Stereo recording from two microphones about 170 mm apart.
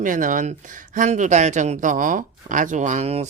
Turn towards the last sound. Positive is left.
turn(degrees=-40)  # may be behind; listen again after turning